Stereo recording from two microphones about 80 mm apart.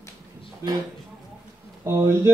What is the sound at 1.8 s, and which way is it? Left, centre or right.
Speech, right.